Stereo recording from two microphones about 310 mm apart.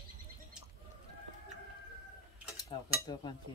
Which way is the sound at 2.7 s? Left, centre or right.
Centre.